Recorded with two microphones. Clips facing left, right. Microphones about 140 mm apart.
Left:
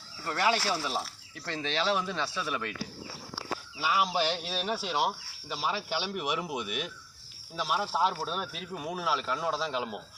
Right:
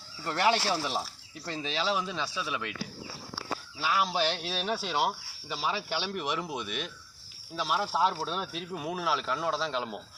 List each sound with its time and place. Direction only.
0.3 s speech: 25° right (ahead or behind)
1.5 s speech: 5° right (ahead or behind)
3.8 s speech: 5° left (ahead or behind)